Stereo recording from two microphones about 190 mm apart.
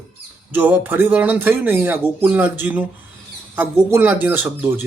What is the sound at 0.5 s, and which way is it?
A man's voice, 10° right (ahead or behind).